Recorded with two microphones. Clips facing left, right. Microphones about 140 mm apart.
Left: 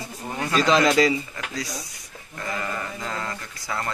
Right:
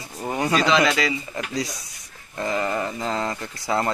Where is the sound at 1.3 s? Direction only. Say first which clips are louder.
Right 4 dB; 20° right (ahead or behind).